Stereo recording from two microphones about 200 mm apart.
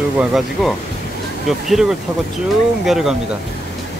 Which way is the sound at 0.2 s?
Centre (ahead or behind).